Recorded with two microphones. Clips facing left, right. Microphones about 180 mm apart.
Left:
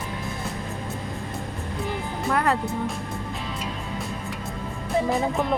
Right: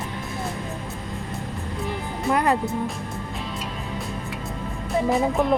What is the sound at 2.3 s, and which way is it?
Music, 15° right (ahead or behind).